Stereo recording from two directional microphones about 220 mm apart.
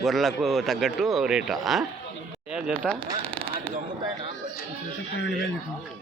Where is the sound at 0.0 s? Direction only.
Centre (ahead or behind).